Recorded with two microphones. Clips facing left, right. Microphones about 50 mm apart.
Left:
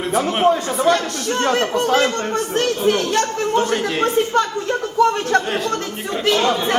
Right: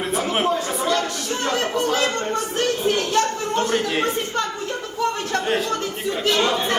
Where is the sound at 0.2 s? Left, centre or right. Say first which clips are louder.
Left 6 dB; centre.